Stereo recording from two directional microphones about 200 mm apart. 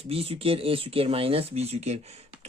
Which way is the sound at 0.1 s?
30° right (ahead or behind).